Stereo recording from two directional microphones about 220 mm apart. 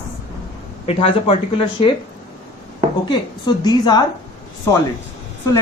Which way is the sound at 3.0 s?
20° left (ahead or behind).